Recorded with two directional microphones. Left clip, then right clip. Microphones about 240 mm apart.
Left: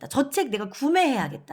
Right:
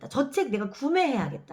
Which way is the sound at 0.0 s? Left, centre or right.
Left.